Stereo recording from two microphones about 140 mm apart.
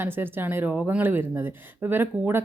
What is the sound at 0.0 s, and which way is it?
Speech, 15° right (ahead or behind).